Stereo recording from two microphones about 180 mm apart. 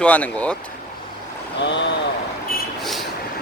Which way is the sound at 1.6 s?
75° left (ahead or behind).